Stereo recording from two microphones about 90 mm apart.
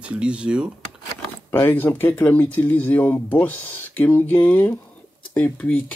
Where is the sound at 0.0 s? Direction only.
10° right (ahead or behind).